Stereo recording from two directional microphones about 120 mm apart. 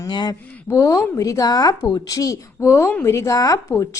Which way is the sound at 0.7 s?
25° left (ahead or behind).